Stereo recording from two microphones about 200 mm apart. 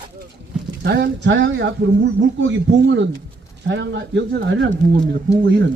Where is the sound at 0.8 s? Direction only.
55° right (ahead or behind).